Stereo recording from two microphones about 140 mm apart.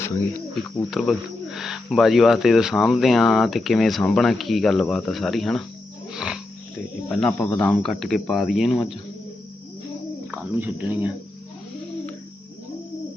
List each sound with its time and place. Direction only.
0.9 s speech: centre (ahead or behind)
10.3 s speech: 10° right (ahead or behind)